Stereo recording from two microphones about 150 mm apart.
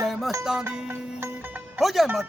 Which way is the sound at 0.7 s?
15° right (ahead or behind).